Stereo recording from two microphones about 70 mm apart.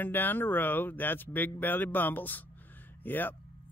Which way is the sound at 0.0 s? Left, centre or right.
Left.